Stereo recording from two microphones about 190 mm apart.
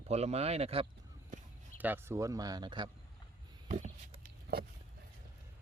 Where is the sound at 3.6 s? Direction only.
40° right (ahead or behind).